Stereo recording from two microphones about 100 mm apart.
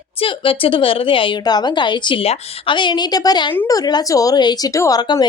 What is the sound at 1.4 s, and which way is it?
Speech, 45° left (ahead or behind).